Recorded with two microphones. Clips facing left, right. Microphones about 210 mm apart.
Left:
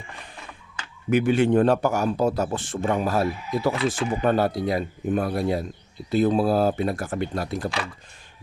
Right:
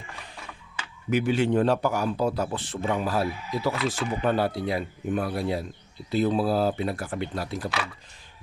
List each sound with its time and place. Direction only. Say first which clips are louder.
1.1 s a man's voice: left 4 dB; 50° left (ahead or behind)